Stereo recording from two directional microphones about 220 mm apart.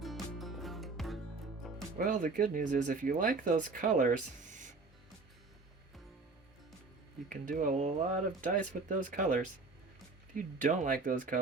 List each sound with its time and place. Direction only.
0.0 s music: centre (ahead or behind)
2.0 s speech: 40° right (ahead or behind)
7.3 s speech: 40° right (ahead or behind)